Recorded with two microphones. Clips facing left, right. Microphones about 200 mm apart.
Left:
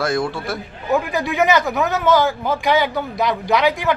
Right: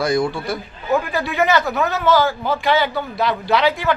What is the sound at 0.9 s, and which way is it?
A man's voice, 15° left (ahead or behind).